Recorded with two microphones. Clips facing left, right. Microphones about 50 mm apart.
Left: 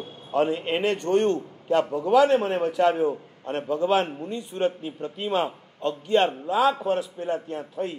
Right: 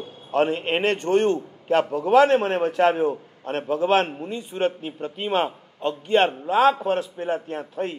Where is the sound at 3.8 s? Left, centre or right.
Right.